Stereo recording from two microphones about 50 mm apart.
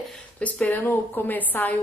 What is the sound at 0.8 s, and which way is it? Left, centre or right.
Speech, left.